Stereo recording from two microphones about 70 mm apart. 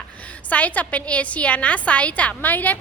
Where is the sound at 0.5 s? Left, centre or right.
Left.